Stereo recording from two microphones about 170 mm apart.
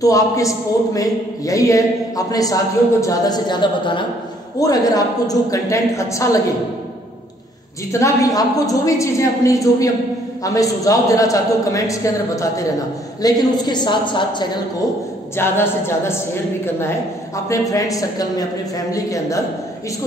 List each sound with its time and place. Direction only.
0.0 s a man's voice: 20° left (ahead or behind)
7.9 s a man's voice: 20° left (ahead or behind)
15.3 s speech: 15° left (ahead or behind)
17.5 s a man's voice: 20° left (ahead or behind)